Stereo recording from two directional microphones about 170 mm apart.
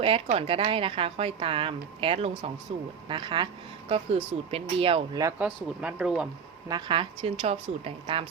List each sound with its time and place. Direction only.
0.0 s a woman's voice: 35° right (ahead or behind)
5.8 s speech: 5° right (ahead or behind)
6.7 s a woman's voice: 25° right (ahead or behind)